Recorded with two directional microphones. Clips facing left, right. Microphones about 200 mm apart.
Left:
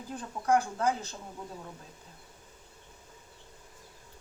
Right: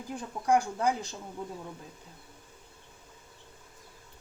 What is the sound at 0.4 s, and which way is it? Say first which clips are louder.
Speech: right 1 dB; 15° right (ahead or behind).